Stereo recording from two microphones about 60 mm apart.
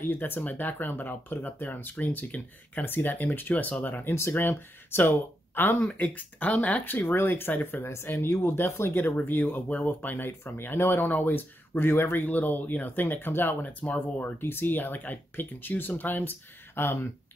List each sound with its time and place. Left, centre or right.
0.1 s speech: left